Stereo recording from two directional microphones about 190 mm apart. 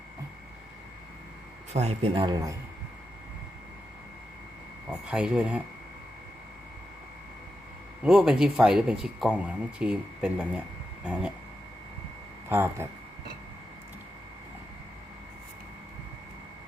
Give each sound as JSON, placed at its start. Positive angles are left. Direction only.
{"t": 1.7, "sound": "a man's voice", "side_deg": -35}
{"t": 4.9, "sound": "speech", "side_deg": -5}
{"t": 8.0, "sound": "speech", "side_deg": -5}
{"t": 12.5, "sound": "speech", "side_deg": -10}